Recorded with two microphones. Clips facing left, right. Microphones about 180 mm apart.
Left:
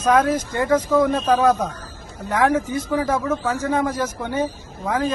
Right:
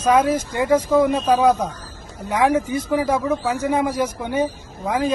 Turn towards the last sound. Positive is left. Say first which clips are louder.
# right 1 dB
turn(degrees=-15)  # may be behind; listen again after turning